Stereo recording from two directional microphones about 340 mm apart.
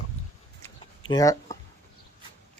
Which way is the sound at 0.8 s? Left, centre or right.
Centre.